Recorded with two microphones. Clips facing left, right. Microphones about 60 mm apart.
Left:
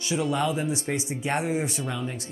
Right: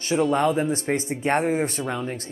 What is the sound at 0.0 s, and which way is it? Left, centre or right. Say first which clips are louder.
Speech: right 5 dB; right.